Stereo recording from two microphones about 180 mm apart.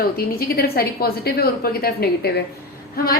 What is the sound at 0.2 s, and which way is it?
A woman's voice, 55° left (ahead or behind).